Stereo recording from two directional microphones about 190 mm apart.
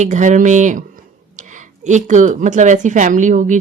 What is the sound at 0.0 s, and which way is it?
Speech, 40° right (ahead or behind).